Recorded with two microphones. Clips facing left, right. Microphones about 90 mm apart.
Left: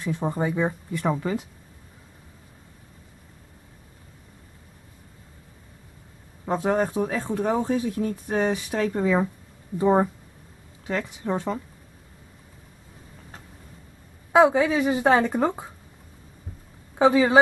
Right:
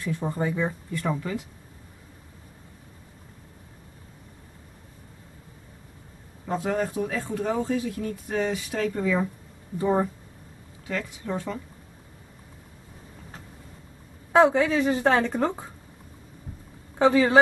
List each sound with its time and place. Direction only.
0.0 s speech: 20° left (ahead or behind)
6.4 s speech: 30° left (ahead or behind)
14.3 s a woman's voice: 10° left (ahead or behind)
16.9 s speech: 15° left (ahead or behind)